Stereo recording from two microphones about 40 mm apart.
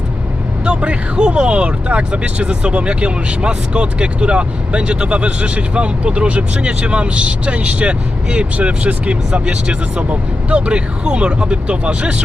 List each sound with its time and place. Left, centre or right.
0.6 s speech: right